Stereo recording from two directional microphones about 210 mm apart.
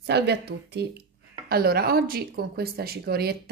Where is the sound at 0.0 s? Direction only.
50° right (ahead or behind).